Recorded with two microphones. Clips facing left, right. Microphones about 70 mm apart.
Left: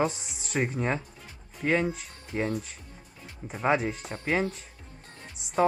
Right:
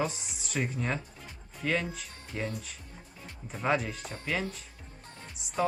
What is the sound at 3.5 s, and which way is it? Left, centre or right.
Speech, left.